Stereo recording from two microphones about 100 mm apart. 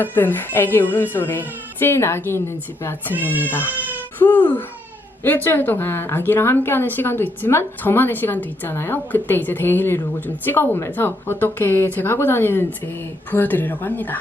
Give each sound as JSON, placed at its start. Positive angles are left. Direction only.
{"t": 0.0, "sound": "speech", "side_deg": 20}
{"t": 4.2, "sound": "a sound", "side_deg": 15}
{"t": 5.2, "sound": "speech", "side_deg": 20}